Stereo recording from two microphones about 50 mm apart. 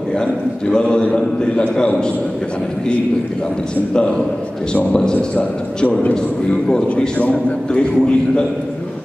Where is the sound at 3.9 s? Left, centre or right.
Centre.